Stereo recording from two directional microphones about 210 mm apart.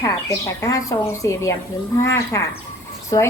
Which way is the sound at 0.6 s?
15° left (ahead or behind).